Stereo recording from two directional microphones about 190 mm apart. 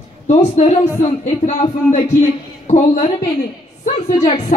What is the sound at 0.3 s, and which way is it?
A woman's voice, 35° left (ahead or behind).